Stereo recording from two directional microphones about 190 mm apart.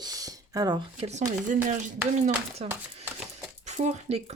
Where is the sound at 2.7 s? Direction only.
10° right (ahead or behind).